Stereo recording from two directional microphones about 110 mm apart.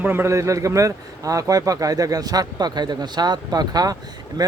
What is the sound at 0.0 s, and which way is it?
Speech, 20° right (ahead or behind).